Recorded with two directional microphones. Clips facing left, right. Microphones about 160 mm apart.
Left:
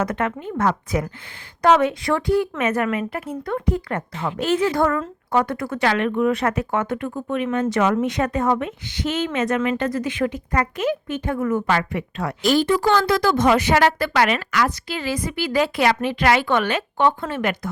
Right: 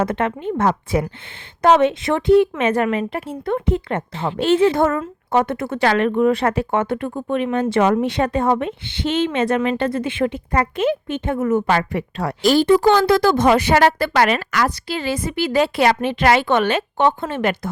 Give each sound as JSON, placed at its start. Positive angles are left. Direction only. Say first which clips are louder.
{"t": 0.0, "sound": "a woman's voice", "louder": "right 3 dB", "side_deg": -25}
{"t": 5.8, "sound": "a woman's voice", "louder": "right 4 dB", "side_deg": -35}
{"t": 14.9, "sound": "a woman's voice", "louder": "right 3 dB", "side_deg": -30}